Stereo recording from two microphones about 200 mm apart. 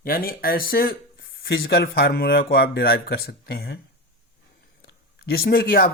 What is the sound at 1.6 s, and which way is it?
Speech, 50° left (ahead or behind).